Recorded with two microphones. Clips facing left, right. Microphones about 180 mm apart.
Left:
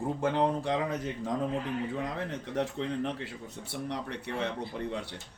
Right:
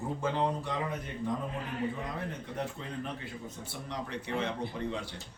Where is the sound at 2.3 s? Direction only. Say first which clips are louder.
Left 5 dB; 80° left; by 4.5 s 65° left (ahead or behind).